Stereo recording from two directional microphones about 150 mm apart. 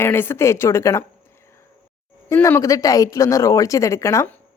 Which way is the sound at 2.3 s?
15° left (ahead or behind).